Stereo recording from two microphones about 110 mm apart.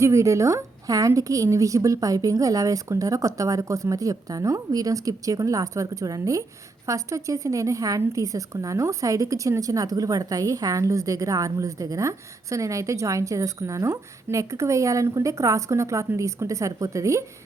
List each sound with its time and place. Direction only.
0.0 s a woman's voice: 25° right (ahead or behind)